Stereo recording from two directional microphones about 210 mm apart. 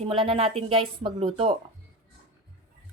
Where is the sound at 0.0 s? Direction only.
25° right (ahead or behind).